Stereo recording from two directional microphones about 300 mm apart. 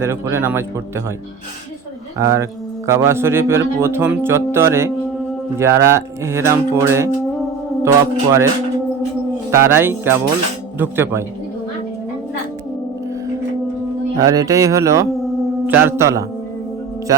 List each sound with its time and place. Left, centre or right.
0.0 s speech: centre
2.1 s speech: centre
9.5 s speech: centre
14.2 s mantra: centre
15.8 s speech: centre